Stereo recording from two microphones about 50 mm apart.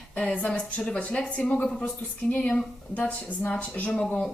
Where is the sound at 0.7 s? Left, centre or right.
Centre.